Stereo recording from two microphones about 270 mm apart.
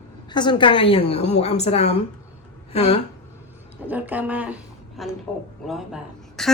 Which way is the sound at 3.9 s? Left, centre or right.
Centre.